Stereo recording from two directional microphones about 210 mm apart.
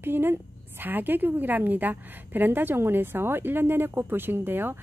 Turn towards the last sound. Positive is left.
turn(degrees=-10)  # may be behind; listen again after turning